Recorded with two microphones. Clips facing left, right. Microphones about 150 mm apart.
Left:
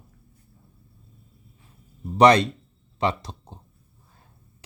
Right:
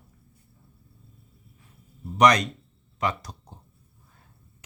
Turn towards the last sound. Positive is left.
turn(degrees=25)  # may be behind; listen again after turning